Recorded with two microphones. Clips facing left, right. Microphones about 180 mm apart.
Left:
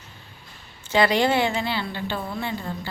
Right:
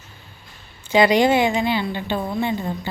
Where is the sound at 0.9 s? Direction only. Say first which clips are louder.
Right 4 dB; 15° right (ahead or behind).